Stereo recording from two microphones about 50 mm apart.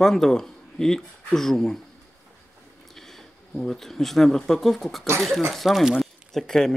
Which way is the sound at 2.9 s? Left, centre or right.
Centre.